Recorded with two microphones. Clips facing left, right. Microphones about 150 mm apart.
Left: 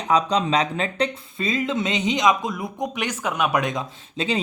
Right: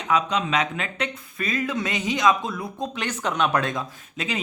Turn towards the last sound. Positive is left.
turn(degrees=30)  # may be behind; listen again after turning